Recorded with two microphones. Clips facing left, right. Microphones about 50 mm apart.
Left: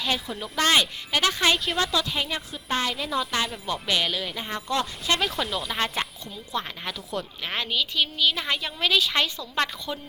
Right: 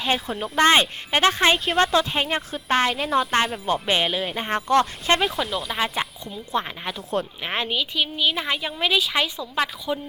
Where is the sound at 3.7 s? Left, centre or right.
Right.